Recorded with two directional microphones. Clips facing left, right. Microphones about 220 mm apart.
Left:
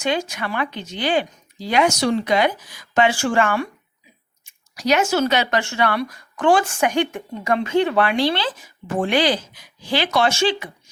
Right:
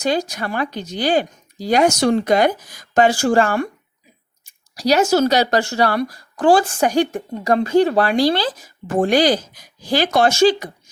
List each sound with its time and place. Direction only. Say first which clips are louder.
0.0 s speech: right 3 dB; 35° right (ahead or behind)